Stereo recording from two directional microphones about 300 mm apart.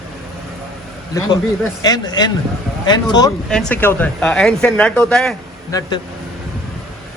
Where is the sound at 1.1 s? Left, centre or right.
Centre.